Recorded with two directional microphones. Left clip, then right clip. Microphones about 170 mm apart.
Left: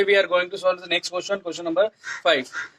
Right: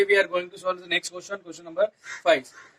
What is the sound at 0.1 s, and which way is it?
Speech, 35° left (ahead or behind).